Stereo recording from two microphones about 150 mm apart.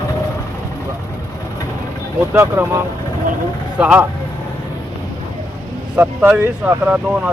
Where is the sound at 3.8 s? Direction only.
10° right (ahead or behind).